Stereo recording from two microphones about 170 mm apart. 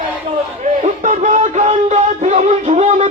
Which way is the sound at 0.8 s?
45° right (ahead or behind).